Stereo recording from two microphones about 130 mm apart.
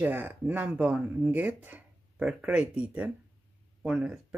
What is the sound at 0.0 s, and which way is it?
Speech, 15° right (ahead or behind).